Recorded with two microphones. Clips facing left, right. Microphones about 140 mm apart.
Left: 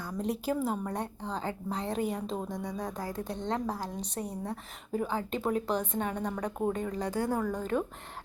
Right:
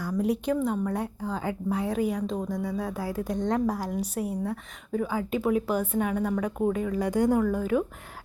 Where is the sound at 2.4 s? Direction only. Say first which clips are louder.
Right 6 dB; 20° left (ahead or behind).